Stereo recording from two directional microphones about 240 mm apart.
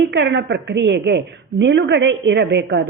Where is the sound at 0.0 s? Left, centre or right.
Right.